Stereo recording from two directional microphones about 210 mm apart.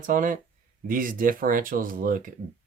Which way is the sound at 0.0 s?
40° right (ahead or behind).